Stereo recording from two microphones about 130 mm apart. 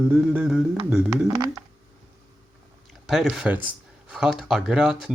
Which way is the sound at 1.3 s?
30° right (ahead or behind).